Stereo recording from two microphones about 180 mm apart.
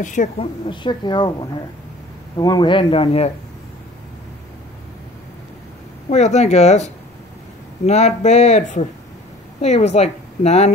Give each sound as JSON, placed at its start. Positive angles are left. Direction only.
{"t": 0.0, "sound": "a woman's voice", "side_deg": 45}
{"t": 0.7, "sound": "speech", "side_deg": 25}
{"t": 6.0, "sound": "speech", "side_deg": 40}